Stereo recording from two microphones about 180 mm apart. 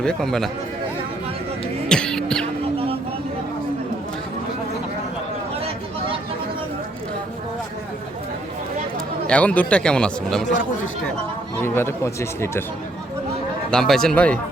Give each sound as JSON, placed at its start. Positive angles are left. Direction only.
{"t": 0.0, "sound": "speech", "side_deg": 5}
{"t": 1.9, "sound": "music", "side_deg": 5}
{"t": 5.5, "sound": "a sound", "side_deg": -35}
{"t": 9.2, "sound": "speech", "side_deg": 5}
{"t": 11.6, "sound": "speech", "side_deg": 15}
{"t": 13.7, "sound": "speech", "side_deg": 0}